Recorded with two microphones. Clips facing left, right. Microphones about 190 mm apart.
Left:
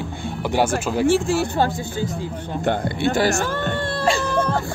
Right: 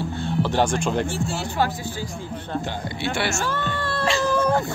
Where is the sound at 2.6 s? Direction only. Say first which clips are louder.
Left 7 dB; 55° left (ahead or behind); by 3.4 s 40° left (ahead or behind).